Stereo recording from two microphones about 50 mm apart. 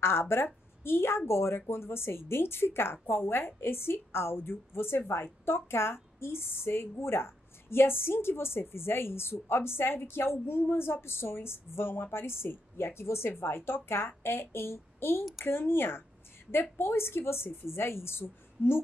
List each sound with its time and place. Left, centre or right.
0.0 s a woman's voice: left